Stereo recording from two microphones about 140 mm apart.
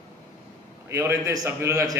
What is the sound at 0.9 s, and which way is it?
A man's voice, 20° right (ahead or behind).